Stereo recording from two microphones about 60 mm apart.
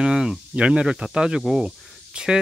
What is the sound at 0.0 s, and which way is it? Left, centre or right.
Speech, centre.